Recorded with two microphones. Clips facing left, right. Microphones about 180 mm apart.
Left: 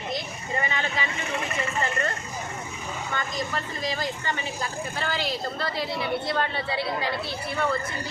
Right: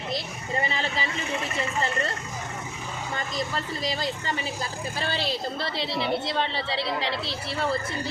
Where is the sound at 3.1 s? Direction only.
35° right (ahead or behind).